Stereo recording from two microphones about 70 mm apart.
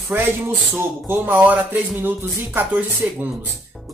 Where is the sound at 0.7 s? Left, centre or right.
Right.